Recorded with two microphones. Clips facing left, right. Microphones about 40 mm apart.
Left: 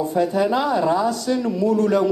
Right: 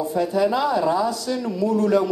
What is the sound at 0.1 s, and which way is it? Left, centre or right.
Speech, left.